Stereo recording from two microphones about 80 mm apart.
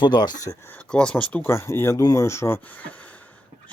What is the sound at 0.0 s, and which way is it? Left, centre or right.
Speech, left.